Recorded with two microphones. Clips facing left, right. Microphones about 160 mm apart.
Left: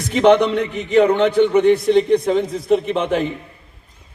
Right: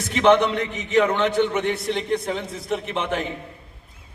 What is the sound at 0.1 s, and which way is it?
Speech, 60° left (ahead or behind).